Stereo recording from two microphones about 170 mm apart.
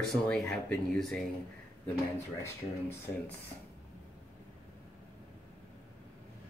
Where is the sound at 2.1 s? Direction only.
15° left (ahead or behind).